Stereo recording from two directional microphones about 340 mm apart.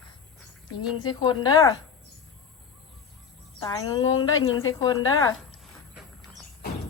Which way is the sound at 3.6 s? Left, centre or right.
Centre.